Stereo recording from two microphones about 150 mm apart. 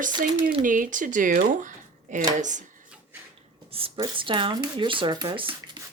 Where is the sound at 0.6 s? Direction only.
60° right (ahead or behind).